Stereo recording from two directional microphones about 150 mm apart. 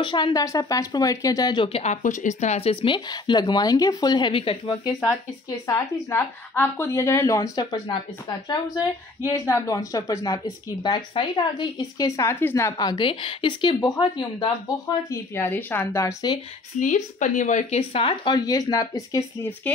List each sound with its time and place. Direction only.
0.0 s a woman's voice: 30° left (ahead or behind)
5.7 s a woman's voice: 15° left (ahead or behind)
9.3 s a woman's voice: 20° left (ahead or behind)
15.0 s a woman's voice: 15° left (ahead or behind)
16.8 s speech: 55° left (ahead or behind); by 19.5 s 20° left (ahead or behind)